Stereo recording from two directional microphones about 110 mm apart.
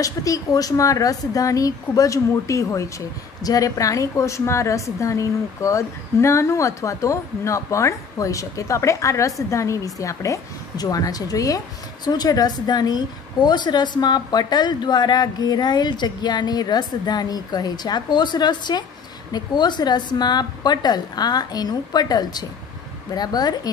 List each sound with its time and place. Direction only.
0.0 s a woman's voice: 30° left (ahead or behind)